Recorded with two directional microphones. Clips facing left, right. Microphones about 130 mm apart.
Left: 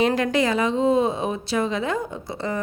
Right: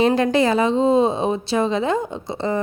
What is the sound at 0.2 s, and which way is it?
A woman's voice, 30° right (ahead or behind).